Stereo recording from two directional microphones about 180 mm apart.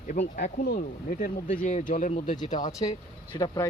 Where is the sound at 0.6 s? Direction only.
55° left (ahead or behind).